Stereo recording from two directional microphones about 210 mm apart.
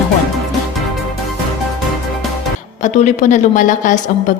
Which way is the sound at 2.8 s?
35° left (ahead or behind).